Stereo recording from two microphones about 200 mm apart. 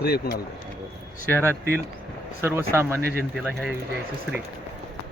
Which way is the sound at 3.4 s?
Centre (ahead or behind).